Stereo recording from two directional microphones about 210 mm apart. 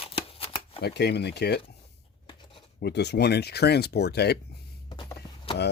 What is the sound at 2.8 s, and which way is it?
Speech, 50° left (ahead or behind).